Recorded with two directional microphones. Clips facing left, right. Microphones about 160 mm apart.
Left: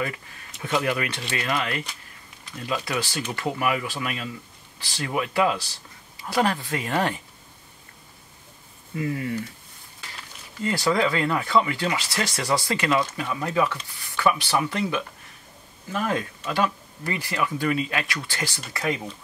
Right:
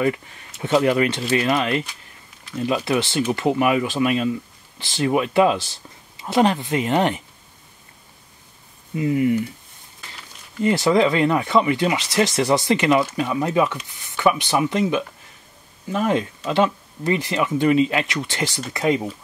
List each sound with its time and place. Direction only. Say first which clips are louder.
0.6 s speech: right 8 dB; 30° right (ahead or behind)
8.9 s speech: right 8 dB; 20° right (ahead or behind)
10.6 s speech: right 6 dB; 20° right (ahead or behind)